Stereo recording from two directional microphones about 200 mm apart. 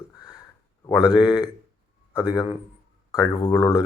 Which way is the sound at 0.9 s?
20° left (ahead or behind).